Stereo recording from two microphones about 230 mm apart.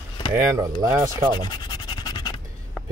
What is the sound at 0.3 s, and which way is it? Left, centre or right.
Speech, centre.